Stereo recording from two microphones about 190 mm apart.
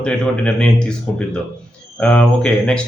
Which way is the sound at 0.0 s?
5° left (ahead or behind).